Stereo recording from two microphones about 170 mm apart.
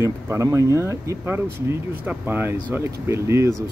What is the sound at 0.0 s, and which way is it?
Speech, 15° right (ahead or behind).